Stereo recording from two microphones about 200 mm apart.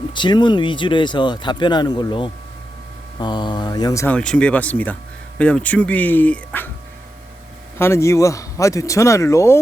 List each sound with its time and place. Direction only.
0.1 s speech: 25° left (ahead or behind)
7.8 s speech: 15° left (ahead or behind)